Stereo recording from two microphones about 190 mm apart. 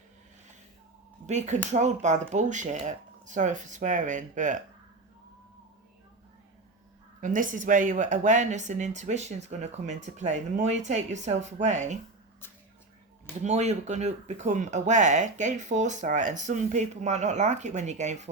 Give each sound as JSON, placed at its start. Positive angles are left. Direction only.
{"t": 1.3, "sound": "speech", "side_deg": -40}
{"t": 7.2, "sound": "speech", "side_deg": -45}
{"t": 13.4, "sound": "speech", "side_deg": -35}